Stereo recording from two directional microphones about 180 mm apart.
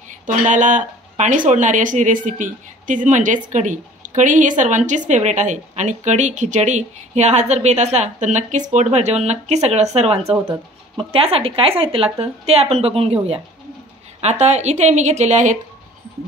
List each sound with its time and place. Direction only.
0.3 s a woman's voice: 45° right (ahead or behind)